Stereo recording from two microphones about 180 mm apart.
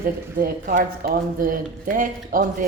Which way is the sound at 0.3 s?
50° right (ahead or behind).